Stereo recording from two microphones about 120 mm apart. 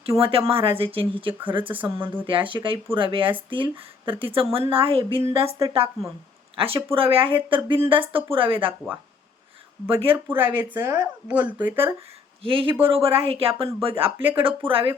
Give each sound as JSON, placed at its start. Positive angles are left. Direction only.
{"t": 0.0, "sound": "speech", "side_deg": -50}
{"t": 1.7, "sound": "speech", "side_deg": -15}
{"t": 2.2, "sound": "speech", "side_deg": -45}
{"t": 9.9, "sound": "speech", "side_deg": -50}
{"t": 10.2, "sound": "speech", "side_deg": -15}
{"t": 12.4, "sound": "speech", "side_deg": -45}
{"t": 14.2, "sound": "speech", "side_deg": -15}
{"t": 14.7, "sound": "speech", "side_deg": -50}